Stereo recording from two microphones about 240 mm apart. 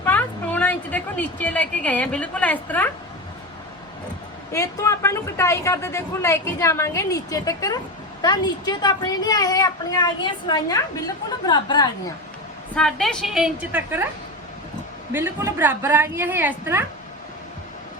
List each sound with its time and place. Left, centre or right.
0.0 s a sound: centre
4.5 s a woman's voice: centre
12.7 s a woman's voice: centre
15.1 s a woman's voice: centre